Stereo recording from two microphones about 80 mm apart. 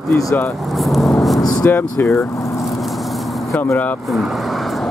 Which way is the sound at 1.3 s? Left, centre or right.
Left.